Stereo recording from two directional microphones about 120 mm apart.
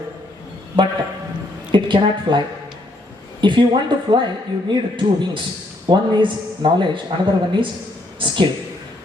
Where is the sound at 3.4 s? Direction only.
40° right (ahead or behind).